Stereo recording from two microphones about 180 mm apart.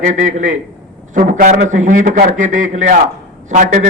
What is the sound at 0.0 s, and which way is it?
A man's voice, 45° right (ahead or behind).